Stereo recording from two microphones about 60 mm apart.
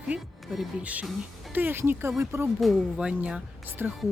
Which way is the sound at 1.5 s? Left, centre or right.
Right.